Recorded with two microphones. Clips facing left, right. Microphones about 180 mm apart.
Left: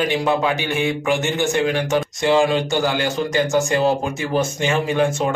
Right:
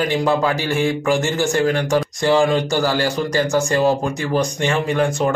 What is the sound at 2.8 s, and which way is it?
Speech, 20° left (ahead or behind).